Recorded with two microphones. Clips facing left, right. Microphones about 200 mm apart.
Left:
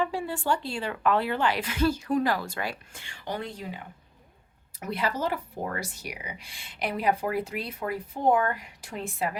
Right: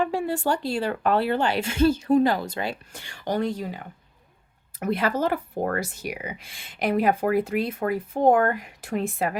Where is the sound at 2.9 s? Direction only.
40° right (ahead or behind).